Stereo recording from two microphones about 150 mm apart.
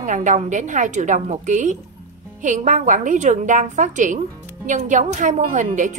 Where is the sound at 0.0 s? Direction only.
55° right (ahead or behind).